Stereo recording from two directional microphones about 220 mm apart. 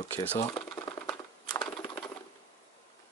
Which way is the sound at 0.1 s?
10° left (ahead or behind).